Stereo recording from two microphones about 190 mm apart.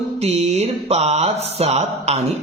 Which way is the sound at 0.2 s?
35° right (ahead or behind).